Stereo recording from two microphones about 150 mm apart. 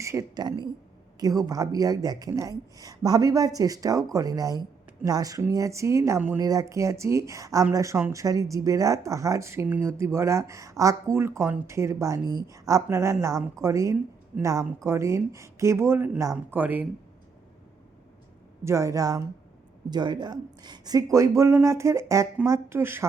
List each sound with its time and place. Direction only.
0.0 s a woman's voice: 20° right (ahead or behind)
18.6 s a woman's voice: 20° right (ahead or behind)